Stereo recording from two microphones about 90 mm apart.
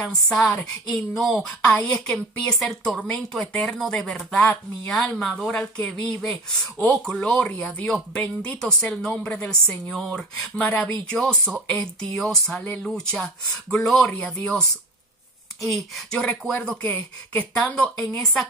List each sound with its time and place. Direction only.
0.0 s a woman's voice: 5° left (ahead or behind)
1.5 s speech: 10° left (ahead or behind)
10.4 s speech: 20° left (ahead or behind)